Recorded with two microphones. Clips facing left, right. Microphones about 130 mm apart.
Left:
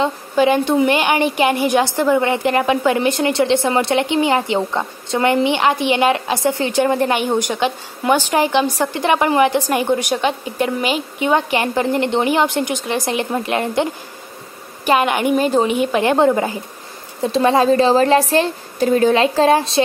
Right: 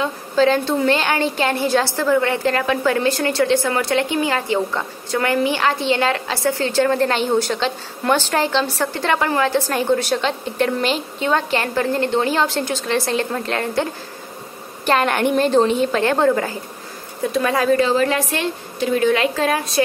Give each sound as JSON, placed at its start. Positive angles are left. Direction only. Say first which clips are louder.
{"t": 0.0, "sound": "a woman's voice", "louder": "left 1 dB", "side_deg": 15}
{"t": 14.9, "sound": "a woman's voice", "louder": "left 2 dB", "side_deg": 10}